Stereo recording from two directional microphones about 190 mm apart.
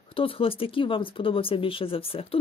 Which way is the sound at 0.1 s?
30° left (ahead or behind).